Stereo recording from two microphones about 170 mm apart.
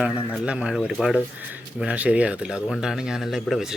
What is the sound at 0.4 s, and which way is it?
Speech, 5° right (ahead or behind).